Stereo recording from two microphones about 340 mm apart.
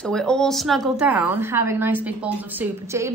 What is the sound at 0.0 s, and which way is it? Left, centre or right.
A woman's voice, centre.